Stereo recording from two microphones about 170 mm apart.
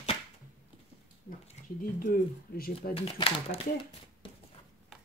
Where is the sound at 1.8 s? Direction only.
55° left (ahead or behind).